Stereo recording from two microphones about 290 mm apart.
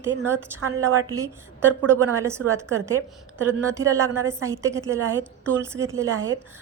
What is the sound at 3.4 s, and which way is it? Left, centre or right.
A woman's voice, centre.